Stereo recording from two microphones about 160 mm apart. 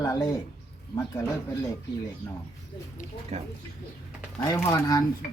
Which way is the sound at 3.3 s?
45° right (ahead or behind).